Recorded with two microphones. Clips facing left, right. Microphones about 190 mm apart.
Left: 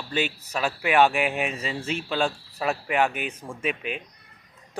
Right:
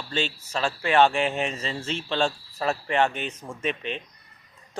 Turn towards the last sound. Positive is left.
turn(degrees=5)  # may be behind; listen again after turning